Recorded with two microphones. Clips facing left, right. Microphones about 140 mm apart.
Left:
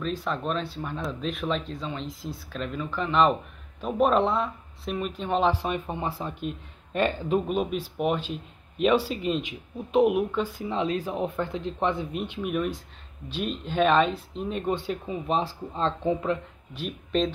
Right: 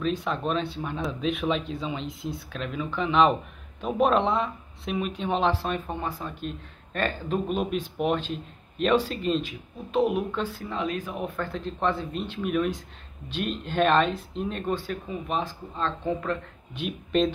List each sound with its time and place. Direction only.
0.0 s speech: centre (ahead or behind)
5.5 s speech: 15° left (ahead or behind)
6.0 s speech: 30° left (ahead or behind)
6.4 s speech: 15° left (ahead or behind)
10.7 s speech: 30° left (ahead or behind); by 14.6 s 5° left (ahead or behind)
14.7 s speech: 20° left (ahead or behind)
16.1 s speech: 15° left (ahead or behind)
16.7 s speech: centre (ahead or behind)